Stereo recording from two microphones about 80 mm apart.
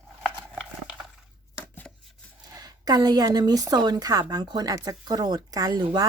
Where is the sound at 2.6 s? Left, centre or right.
Right.